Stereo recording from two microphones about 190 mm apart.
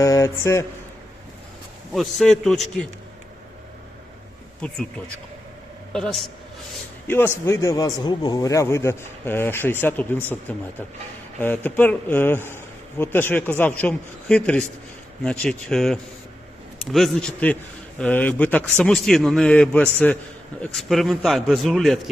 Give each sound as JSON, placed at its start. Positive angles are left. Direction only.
{"t": 0.0, "sound": "a man's voice", "side_deg": 15}
{"t": 1.9, "sound": "a man's voice", "side_deg": 0}
{"t": 5.9, "sound": "a man's voice", "side_deg": 0}
{"t": 7.1, "sound": "a man's voice", "side_deg": 10}
{"t": 11.3, "sound": "a man's voice", "side_deg": 10}